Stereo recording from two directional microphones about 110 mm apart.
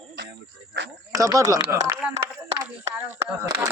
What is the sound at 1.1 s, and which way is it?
Speech, 30° right (ahead or behind).